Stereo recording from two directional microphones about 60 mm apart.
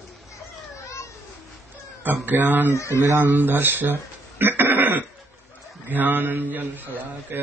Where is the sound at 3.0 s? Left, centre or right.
Right.